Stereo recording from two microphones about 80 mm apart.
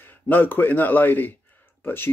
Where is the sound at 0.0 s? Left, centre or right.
Left.